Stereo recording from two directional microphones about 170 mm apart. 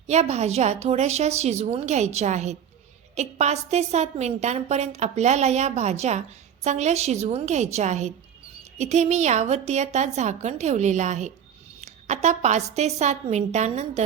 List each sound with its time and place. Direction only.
0.1 s a woman's voice: 40° right (ahead or behind)